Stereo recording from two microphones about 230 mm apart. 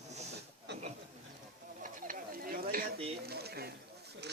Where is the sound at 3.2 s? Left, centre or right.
Right.